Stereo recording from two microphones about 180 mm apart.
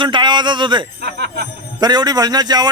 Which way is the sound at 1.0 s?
65° right (ahead or behind).